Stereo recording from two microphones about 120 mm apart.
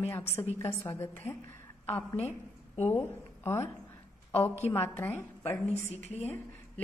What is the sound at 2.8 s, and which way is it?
Speech, 20° left (ahead or behind).